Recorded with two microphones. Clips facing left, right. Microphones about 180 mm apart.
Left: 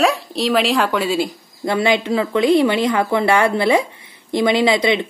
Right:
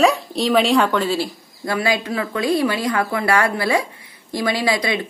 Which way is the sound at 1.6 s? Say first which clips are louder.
Left 4 dB; 25° left (ahead or behind).